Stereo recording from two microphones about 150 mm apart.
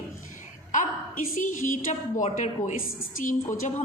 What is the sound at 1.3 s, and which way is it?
A woman's voice, 60° left (ahead or behind).